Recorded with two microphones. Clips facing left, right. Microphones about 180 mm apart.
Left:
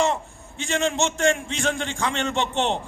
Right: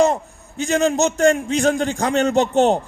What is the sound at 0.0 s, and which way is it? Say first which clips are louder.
A man's voice: right 6 dB; 40° right (ahead or behind).